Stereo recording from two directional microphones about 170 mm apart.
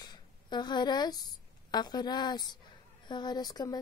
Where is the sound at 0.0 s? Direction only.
25° left (ahead or behind).